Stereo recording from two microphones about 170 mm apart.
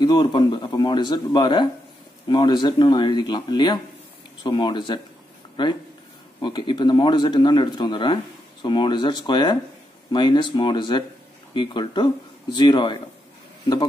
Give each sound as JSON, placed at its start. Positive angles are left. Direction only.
{"t": 0.0, "sound": "speech", "side_deg": 25}